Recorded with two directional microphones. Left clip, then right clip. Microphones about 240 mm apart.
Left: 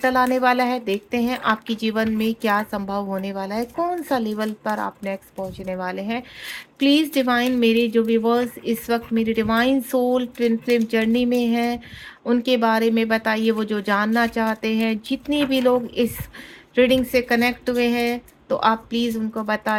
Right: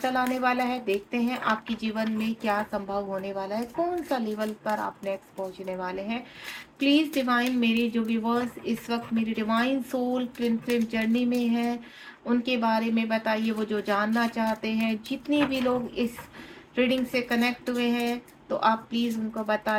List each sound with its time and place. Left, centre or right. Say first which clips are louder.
0.0 s speech: left 8 dB; left